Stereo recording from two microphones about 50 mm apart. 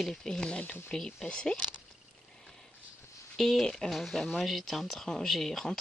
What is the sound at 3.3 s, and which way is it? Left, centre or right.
Speech, centre.